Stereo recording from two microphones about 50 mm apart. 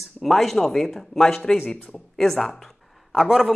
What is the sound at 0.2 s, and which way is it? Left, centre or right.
A woman's voice, centre.